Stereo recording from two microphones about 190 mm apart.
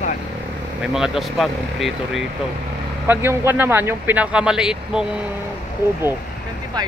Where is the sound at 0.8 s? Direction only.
5° right (ahead or behind).